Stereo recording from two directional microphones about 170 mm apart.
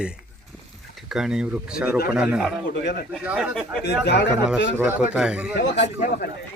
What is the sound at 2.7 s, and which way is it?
Speech, 75° left (ahead or behind).